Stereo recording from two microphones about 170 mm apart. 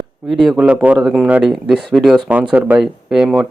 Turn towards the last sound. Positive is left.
turn(degrees=-5)  # may be behind; listen again after turning